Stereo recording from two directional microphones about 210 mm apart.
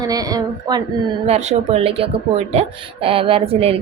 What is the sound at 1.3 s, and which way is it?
Speech, 30° right (ahead or behind).